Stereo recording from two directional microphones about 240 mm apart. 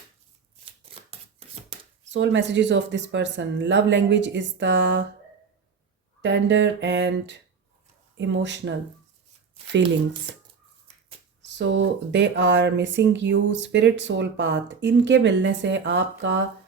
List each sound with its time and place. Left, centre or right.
2.1 s speech: right
6.2 s speech: right
11.4 s speech: right